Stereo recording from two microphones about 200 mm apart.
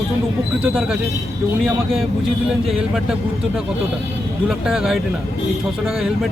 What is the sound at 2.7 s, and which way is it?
Speech, centre (ahead or behind).